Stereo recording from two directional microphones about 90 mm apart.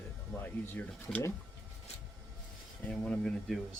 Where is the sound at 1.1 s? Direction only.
5° left (ahead or behind).